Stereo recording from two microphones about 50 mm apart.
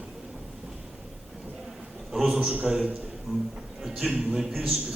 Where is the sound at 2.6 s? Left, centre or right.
Centre.